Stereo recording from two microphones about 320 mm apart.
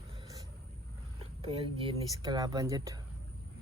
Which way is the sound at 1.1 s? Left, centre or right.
Centre.